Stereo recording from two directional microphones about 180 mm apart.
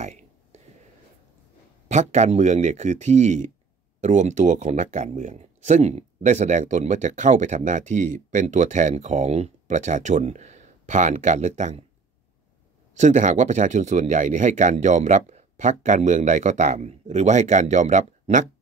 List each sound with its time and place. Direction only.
0.0 s a sound: 40° right (ahead or behind)
1.9 s speech: 40° right (ahead or behind)
12.9 s speech: 40° right (ahead or behind)